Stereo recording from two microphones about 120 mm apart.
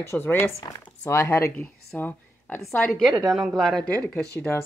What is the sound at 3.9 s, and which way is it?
Speech, 10° left (ahead or behind).